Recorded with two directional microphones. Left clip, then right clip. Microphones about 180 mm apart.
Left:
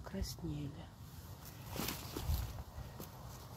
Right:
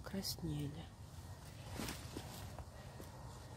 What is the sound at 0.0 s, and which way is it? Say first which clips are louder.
Speech: right 1 dB; 35° right (ahead or behind).